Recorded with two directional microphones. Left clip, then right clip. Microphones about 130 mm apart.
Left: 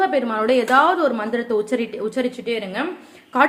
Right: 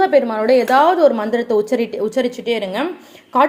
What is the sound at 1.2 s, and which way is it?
A woman's voice, 40° right (ahead or behind).